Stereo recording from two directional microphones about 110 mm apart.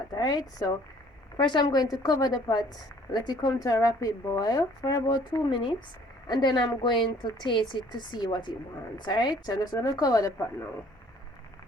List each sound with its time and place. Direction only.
0.1 s speech: 35° left (ahead or behind)
5.5 s speech: 50° left (ahead or behind); by 10.4 s 30° left (ahead or behind)